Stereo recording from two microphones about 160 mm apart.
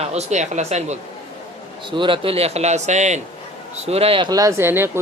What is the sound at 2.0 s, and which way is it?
Speech, 30° right (ahead or behind).